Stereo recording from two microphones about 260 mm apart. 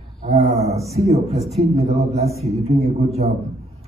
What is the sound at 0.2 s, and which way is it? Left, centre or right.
Wild animals, right.